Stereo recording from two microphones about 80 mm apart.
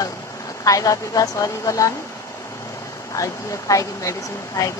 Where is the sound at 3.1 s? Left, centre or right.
Left.